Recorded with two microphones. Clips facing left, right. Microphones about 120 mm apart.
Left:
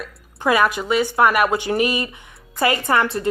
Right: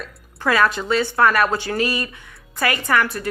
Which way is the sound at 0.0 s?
15° left (ahead or behind).